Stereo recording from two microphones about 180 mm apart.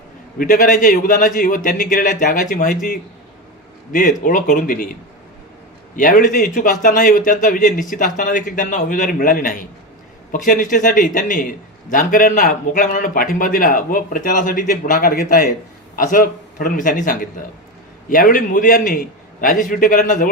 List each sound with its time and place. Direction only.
0.3 s a man's voice: 50° left (ahead or behind)
6.0 s a man's voice: 50° left (ahead or behind)